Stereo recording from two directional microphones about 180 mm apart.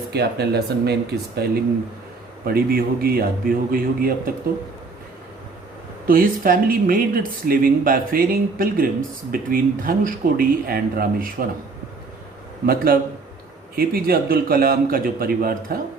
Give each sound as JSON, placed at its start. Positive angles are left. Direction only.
{"t": 0.1, "sound": "speech", "side_deg": -65}
{"t": 6.1, "sound": "speech", "side_deg": -50}
{"t": 12.6, "sound": "speech", "side_deg": -55}